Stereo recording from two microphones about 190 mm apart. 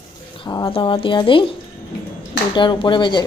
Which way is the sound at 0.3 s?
25° left (ahead or behind).